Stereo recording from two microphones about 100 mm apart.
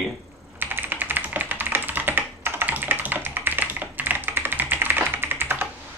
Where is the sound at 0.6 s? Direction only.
20° right (ahead or behind).